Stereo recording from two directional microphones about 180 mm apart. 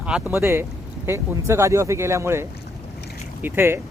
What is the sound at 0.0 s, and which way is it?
Speech, 10° right (ahead or behind).